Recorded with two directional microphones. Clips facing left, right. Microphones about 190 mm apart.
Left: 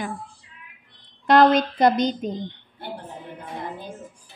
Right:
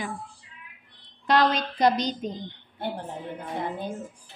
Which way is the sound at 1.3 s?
50° left (ahead or behind).